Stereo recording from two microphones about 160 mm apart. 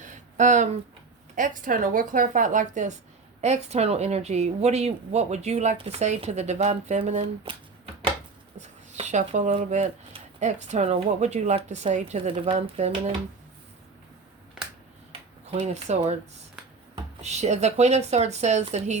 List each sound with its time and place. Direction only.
0.0 s a sound: 50° right (ahead or behind)
1.4 s a woman's voice: 55° right (ahead or behind)
7.5 s speech: 30° right (ahead or behind)
8.6 s speech: 45° right (ahead or behind)
15.4 s speech: 45° right (ahead or behind)
17.2 s speech: 45° right (ahead or behind)